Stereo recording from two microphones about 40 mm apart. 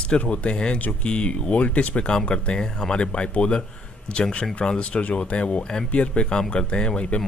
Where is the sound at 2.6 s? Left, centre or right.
Centre.